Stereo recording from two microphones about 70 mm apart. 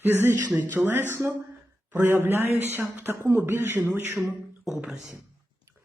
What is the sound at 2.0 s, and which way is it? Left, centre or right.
Speech, right.